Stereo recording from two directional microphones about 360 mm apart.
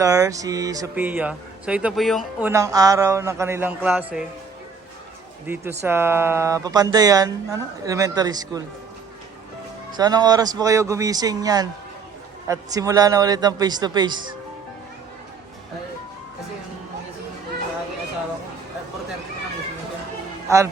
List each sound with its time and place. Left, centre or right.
0.0 s speech: centre
5.5 s speech: centre
9.9 s speech: centre
20.5 s speech: centre